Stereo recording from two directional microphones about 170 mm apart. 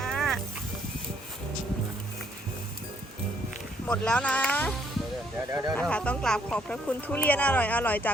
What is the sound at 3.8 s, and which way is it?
Speech, 5° left (ahead or behind).